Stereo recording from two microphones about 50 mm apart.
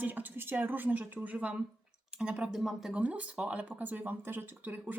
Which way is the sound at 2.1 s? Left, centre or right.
Right.